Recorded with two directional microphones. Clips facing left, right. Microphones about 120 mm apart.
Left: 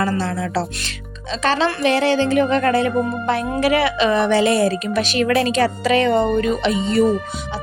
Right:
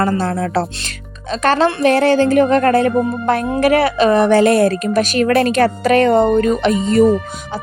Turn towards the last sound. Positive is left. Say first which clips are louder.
# right 4 dB
turn(degrees=-40)  # may be behind; listen again after turning